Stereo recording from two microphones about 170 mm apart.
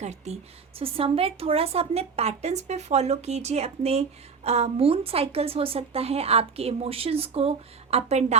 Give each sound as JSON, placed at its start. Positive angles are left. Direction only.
{"t": 0.0, "sound": "a woman's voice", "side_deg": -40}